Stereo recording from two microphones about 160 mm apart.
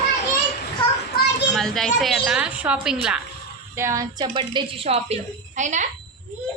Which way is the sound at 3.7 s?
20° right (ahead or behind).